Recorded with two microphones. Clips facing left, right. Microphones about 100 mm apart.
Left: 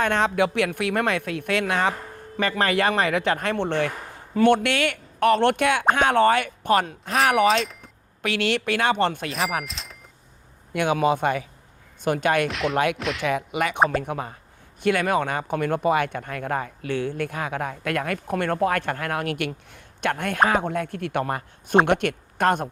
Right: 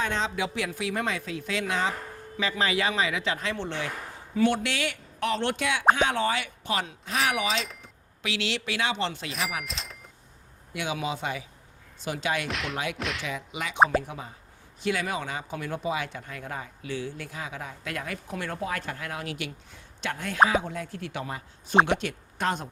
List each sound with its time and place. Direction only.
0.0 s speech: 60° left (ahead or behind)
9.6 s a sound: centre (ahead or behind)
10.8 s speech: 55° left (ahead or behind)
12.5 s speech: centre (ahead or behind)
12.7 s speech: 60° left (ahead or behind)
13.0 s speech: centre (ahead or behind)
13.2 s speech: 60° left (ahead or behind)